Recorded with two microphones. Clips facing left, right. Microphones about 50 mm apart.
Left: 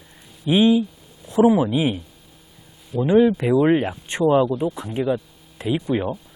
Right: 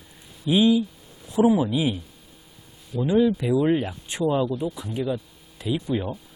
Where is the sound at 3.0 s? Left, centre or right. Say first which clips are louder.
Left 4 dB; left.